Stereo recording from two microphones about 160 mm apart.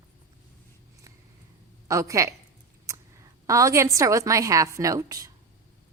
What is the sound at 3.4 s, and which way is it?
A woman's voice, 20° right (ahead or behind).